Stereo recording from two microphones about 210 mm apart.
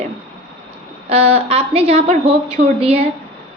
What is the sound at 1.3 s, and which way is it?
A woman's voice, 30° right (ahead or behind).